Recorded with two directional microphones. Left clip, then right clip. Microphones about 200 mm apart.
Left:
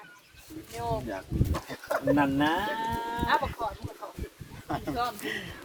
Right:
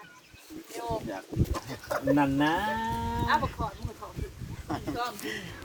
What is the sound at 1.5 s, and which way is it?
Speech, centre (ahead or behind).